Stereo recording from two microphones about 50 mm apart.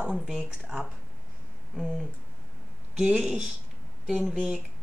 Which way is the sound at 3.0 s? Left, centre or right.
Right.